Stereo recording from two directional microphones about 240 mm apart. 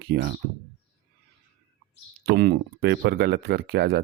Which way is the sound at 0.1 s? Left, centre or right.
Right.